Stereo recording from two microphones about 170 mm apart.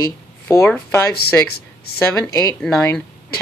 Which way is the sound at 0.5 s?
15° left (ahead or behind).